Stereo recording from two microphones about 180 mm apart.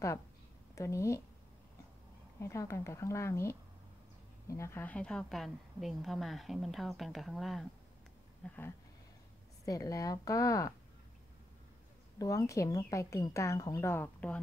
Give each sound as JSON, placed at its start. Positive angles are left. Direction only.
{"t": 0.7, "sound": "speech", "side_deg": 15}
{"t": 2.4, "sound": "a woman's voice", "side_deg": 15}
{"t": 9.7, "sound": "speech", "side_deg": 20}
{"t": 12.2, "sound": "speech", "side_deg": 15}